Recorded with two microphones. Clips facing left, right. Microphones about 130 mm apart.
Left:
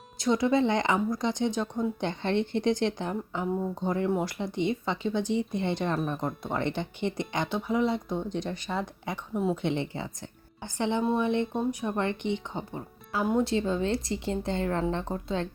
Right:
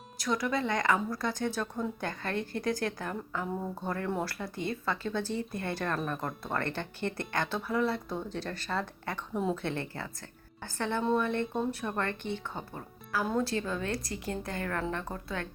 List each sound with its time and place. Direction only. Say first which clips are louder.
0.2 s speech: left 7 dB; 25° left (ahead or behind)